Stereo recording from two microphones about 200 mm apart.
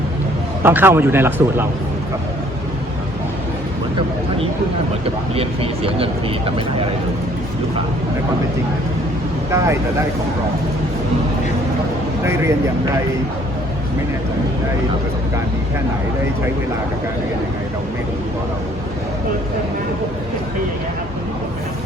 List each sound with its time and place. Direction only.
0.6 s a man's voice: 10° right (ahead or behind)
5.3 s speech: 30° right (ahead or behind)
12.2 s a man's voice: 15° right (ahead or behind)